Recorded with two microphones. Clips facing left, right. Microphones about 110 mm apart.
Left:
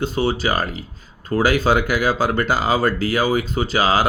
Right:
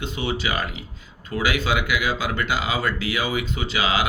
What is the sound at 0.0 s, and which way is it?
Speech, 40° left (ahead or behind).